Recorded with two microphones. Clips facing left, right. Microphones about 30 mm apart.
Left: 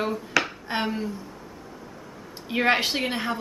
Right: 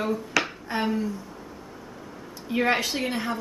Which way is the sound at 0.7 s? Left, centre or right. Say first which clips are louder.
Even; left.